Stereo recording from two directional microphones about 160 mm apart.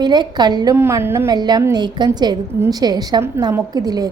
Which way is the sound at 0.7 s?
15° right (ahead or behind).